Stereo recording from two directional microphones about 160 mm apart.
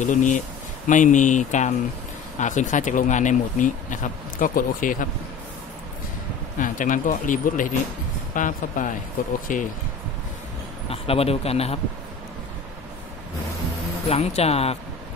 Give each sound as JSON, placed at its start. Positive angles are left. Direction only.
{"t": 0.0, "sound": "speech", "side_deg": 50}
{"t": 6.6, "sound": "speech", "side_deg": 55}
{"t": 10.9, "sound": "speech", "side_deg": 40}
{"t": 14.0, "sound": "speech", "side_deg": 40}